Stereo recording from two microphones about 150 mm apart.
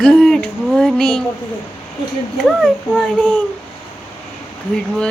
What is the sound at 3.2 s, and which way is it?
Speech, 10° left (ahead or behind).